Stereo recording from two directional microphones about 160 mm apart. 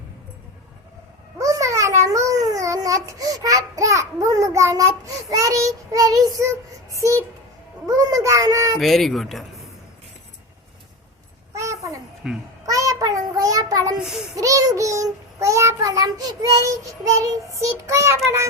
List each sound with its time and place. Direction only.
1.4 s a child's voice: 20° right (ahead or behind)
6.9 s child singing: 20° right (ahead or behind)
8.8 s speech: centre (ahead or behind)
11.5 s a sound: 20° right (ahead or behind)
12.2 s speech: 5° right (ahead or behind)
12.6 s child singing: 20° right (ahead or behind)
14.0 s speech: 5° right (ahead or behind)
14.3 s child singing: 20° right (ahead or behind)